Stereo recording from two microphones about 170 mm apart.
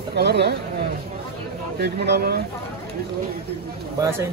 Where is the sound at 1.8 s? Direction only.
70° right (ahead or behind).